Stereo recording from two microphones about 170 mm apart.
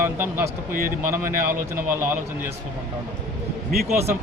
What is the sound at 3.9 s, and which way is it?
Speech, 15° right (ahead or behind).